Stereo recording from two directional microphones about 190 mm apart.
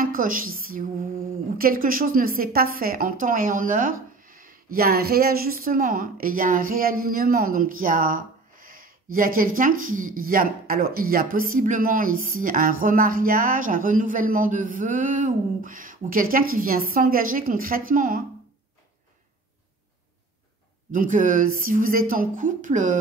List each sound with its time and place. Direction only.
0.0 s a sound: 45° right (ahead or behind)
1.6 s a woman's voice: 50° right (ahead or behind)
20.9 s a woman's voice: 45° right (ahead or behind)